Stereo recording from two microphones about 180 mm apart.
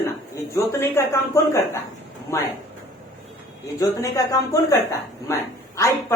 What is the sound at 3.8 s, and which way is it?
Speech, 20° left (ahead or behind).